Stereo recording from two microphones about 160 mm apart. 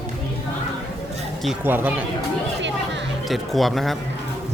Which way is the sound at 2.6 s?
90° right.